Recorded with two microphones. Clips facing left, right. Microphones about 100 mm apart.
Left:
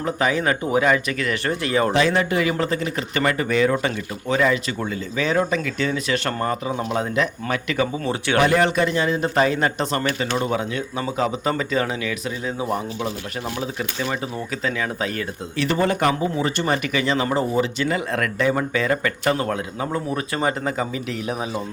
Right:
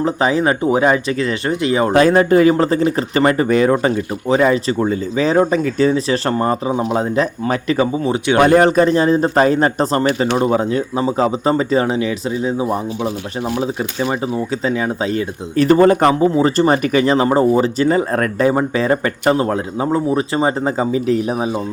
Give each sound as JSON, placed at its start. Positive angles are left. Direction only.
{"t": 0.0, "sound": "a man's voice", "side_deg": -30}
{"t": 1.9, "sound": "a man's voice", "side_deg": -45}
{"t": 7.0, "sound": "speech", "side_deg": -35}
{"t": 7.9, "sound": "a man's voice", "side_deg": -20}
{"t": 8.4, "sound": "a man's voice", "side_deg": -40}
{"t": 15.5, "sound": "a man's voice", "side_deg": -40}